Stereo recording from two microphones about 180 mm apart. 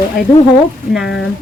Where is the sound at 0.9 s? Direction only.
Centre (ahead or behind).